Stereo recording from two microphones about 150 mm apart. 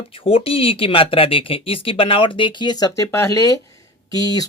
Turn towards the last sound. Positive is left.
turn(degrees=25)  # may be behind; listen again after turning